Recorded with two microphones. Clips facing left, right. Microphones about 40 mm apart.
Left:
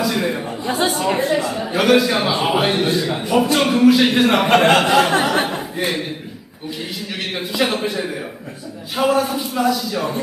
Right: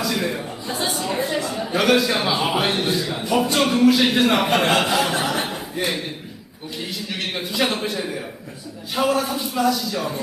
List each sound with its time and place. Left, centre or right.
0.0 s a sound: centre
0.6 s speech: left
1.2 s a man's voice: centre
4.4 s speech: left
5.3 s a sound: left
5.7 s a man's voice: centre
7.1 s a man's voice: centre